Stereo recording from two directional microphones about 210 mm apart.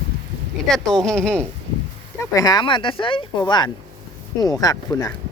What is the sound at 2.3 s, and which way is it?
Speech, 20° left (ahead or behind).